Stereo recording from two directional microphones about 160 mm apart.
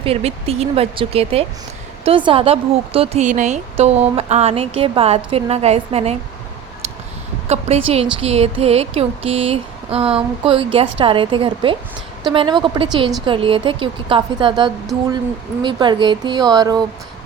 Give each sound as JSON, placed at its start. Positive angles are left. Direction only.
{"t": 0.0, "sound": "speech", "side_deg": -40}
{"t": 7.4, "sound": "speech", "side_deg": -40}